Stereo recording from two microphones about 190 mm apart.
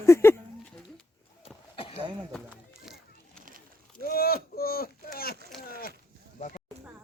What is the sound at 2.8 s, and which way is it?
Children playing, centre (ahead or behind).